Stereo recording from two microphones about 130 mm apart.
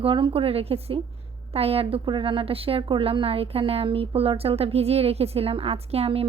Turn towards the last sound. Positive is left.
turn(degrees=-50)  # may be behind; listen again after turning